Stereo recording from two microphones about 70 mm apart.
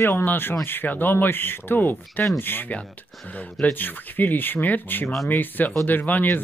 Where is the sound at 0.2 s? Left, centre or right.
Left.